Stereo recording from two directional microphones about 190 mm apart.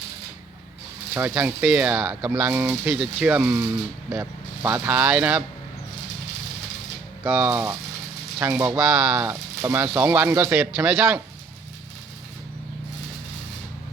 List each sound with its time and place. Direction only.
1.1 s speech: 5° right (ahead or behind)
7.3 s speech: 5° right (ahead or behind)
9.8 s speech: 5° right (ahead or behind)